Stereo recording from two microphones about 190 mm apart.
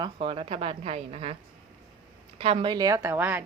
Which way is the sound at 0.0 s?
30° right (ahead or behind).